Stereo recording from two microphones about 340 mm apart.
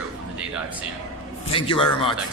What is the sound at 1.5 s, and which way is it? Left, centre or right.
Speech, centre.